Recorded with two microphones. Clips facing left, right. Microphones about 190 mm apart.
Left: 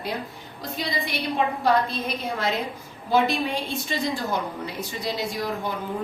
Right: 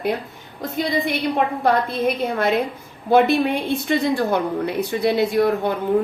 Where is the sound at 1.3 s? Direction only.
55° right (ahead or behind).